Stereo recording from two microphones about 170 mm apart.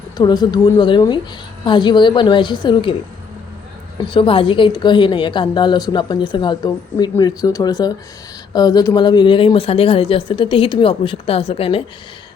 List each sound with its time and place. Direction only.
0.2 s a woman's voice: 25° left (ahead or behind)
4.1 s a woman's voice: 30° left (ahead or behind)